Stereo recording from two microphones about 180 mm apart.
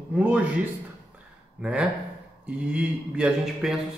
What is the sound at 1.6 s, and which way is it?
A man's voice, 5° right (ahead or behind).